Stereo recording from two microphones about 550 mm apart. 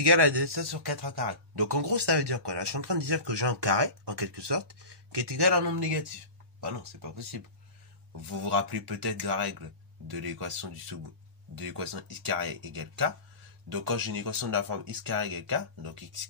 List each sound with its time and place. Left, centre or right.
0.0 s speech: right
6.8 s speech: right
8.5 s speech: right